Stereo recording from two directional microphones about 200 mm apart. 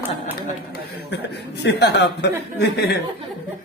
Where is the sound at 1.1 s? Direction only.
55° left (ahead or behind).